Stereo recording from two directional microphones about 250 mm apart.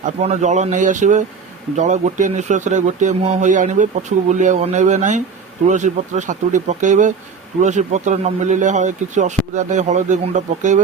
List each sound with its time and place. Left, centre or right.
0.0 s speech: right